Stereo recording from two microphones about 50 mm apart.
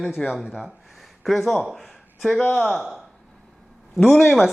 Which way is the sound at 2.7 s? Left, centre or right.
Centre.